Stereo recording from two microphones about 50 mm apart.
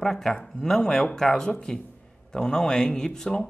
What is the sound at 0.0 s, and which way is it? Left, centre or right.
Speech, centre.